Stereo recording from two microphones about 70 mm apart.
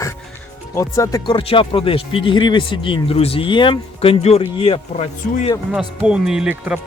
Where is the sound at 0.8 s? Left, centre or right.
Left.